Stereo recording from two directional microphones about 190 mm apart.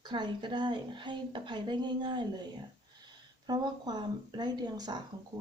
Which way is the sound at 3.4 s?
20° right (ahead or behind).